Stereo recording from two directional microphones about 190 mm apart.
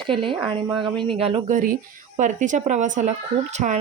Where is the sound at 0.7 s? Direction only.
5° right (ahead or behind).